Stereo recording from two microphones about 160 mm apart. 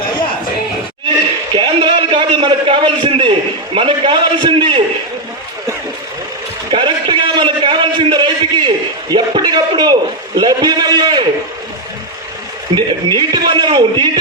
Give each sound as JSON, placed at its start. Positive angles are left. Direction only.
{"t": 1.5, "sound": "a man's voice", "side_deg": -30}
{"t": 6.7, "sound": "a sound", "side_deg": -30}
{"t": 12.7, "sound": "a man's voice", "side_deg": -30}